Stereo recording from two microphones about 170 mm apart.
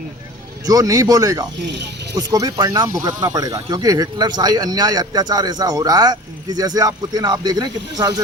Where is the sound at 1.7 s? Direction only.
90° right.